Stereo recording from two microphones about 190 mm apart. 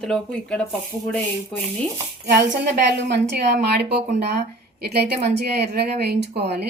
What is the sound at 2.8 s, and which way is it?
A woman's voice, 60° right (ahead or behind).